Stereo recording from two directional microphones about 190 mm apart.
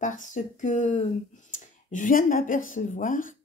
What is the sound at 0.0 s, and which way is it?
Speech, 40° left (ahead or behind).